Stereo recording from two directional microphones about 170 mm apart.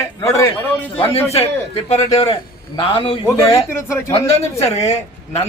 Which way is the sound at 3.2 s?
15° left (ahead or behind).